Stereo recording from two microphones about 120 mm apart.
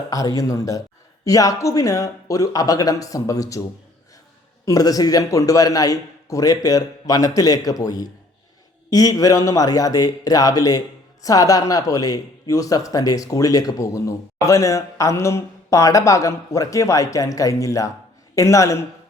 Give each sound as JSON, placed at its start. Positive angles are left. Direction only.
{"t": 0.1, "sound": "a man's voice", "side_deg": 30}
{"t": 4.6, "sound": "a man's voice", "side_deg": 30}